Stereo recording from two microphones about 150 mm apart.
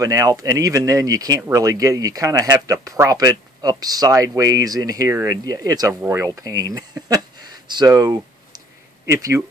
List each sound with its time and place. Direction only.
0.0 s speech: 25° right (ahead or behind)